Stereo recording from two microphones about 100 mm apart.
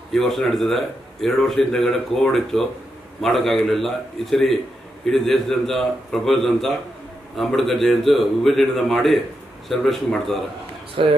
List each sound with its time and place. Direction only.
0.1 s speech: centre (ahead or behind)
11.0 s speech: 70° right (ahead or behind)